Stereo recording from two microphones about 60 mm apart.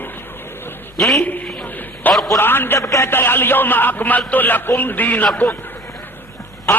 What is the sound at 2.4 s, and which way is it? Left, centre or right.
Speech, left.